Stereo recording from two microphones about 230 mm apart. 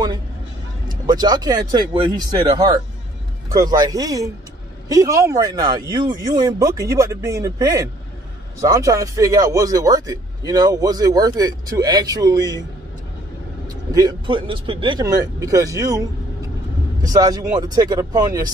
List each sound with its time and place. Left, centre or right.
1.0 s speech: centre
3.5 s speech: centre
13.7 s speech: centre
17.0 s speech: centre